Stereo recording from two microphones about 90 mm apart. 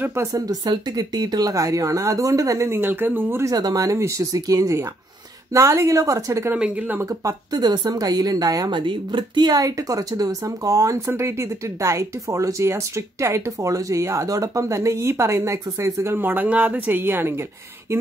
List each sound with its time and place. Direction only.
0.0 s speech: 30° right (ahead or behind)
0.5 s speech: 45° right (ahead or behind); by 3.4 s 25° right (ahead or behind)
3.4 s speech: 45° right (ahead or behind)
6.5 s speech: 15° right (ahead or behind)
7.0 s speech: 40° right (ahead or behind)
8.7 s speech: 60° right (ahead or behind); by 17.4 s 25° right (ahead or behind)